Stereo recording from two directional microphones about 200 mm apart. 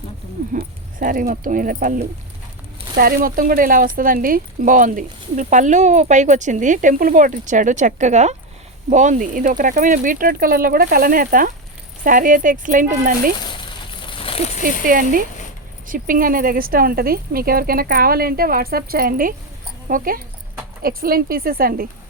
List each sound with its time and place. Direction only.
0.5 s speech: 40° right (ahead or behind)
14.2 s a sound: 30° left (ahead or behind)
14.6 s speech: 45° right (ahead or behind)